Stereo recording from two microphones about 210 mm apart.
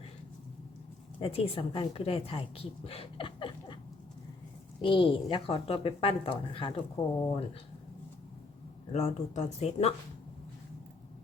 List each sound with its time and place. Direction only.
1.2 s a woman's voice: 25° left (ahead or behind)
4.8 s a woman's voice: 25° left (ahead or behind)
8.9 s speech: 30° left (ahead or behind)